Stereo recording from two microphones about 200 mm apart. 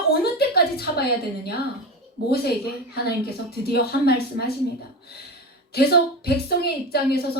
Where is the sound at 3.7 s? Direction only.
50° left (ahead or behind).